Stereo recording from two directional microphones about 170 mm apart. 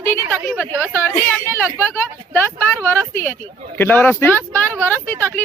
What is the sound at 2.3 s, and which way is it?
Speech, 10° left (ahead or behind).